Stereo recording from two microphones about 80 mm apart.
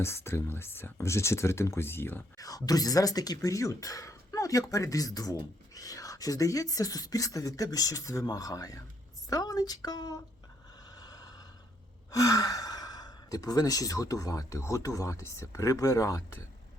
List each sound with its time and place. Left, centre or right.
0.0 s speech: left
2.4 s speech: left
10.8 s a sound: left
12.1 s speech: left